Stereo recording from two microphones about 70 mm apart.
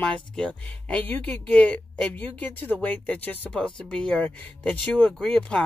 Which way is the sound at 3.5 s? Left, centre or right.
Centre.